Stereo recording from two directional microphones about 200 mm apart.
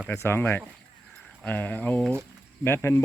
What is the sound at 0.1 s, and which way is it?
Speech, 10° left (ahead or behind).